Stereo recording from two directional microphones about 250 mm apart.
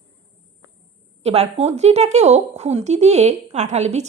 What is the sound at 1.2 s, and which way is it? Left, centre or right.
Speech, right.